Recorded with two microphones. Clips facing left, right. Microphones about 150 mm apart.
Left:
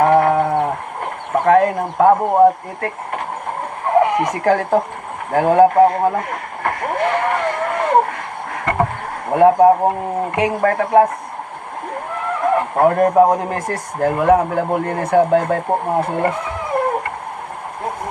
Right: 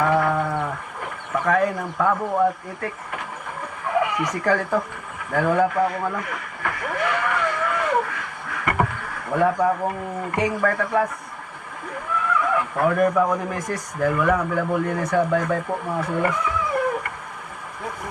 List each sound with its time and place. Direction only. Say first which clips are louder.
0.0 s sheep: left 7 dB; 60° left (ahead or behind)
1.3 s speech: left 7 dB; 65° left (ahead or behind)
2.0 s speech: left 9 dB; 50° left (ahead or behind)
3.8 s speech: left 8 dB; 60° left (ahead or behind)
9.3 s a man's voice: left 9 dB; 55° left (ahead or behind)
10.3 s a man's voice: left 4 dB; 65° left (ahead or behind)
12.4 s horse: left 8 dB; 55° left (ahead or behind)
13.3 s a man's voice: left 5 dB; 65° left (ahead or behind)